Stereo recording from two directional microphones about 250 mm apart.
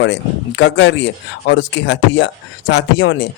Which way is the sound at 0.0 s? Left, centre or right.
Left.